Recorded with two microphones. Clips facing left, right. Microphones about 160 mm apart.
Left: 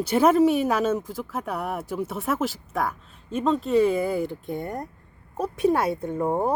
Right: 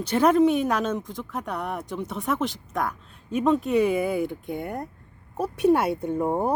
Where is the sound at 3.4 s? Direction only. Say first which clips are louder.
Left 1 dB; 15° right (ahead or behind).